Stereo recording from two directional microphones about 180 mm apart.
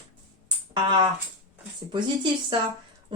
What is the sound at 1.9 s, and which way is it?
Speech, 25° right (ahead or behind).